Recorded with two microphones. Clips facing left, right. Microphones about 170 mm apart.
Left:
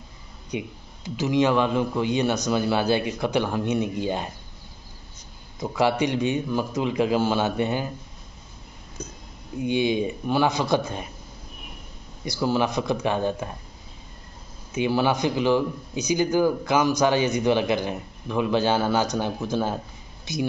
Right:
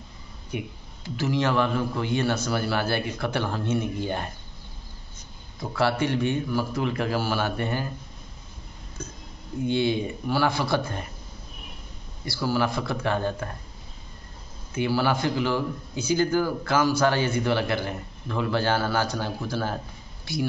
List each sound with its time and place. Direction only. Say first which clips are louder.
0.5 s a man's voice: left 2 dB; 20° left (ahead or behind)
5.6 s a man's voice: left 2 dB; 15° left (ahead or behind)
9.0 s a sound: left 1 dB; 15° left (ahead or behind)
9.6 s a man's voice: left 1 dB; 15° left (ahead or behind)
12.3 s speech: left 2 dB; 20° left (ahead or behind)
14.7 s a man's voice: left 2 dB; 20° left (ahead or behind)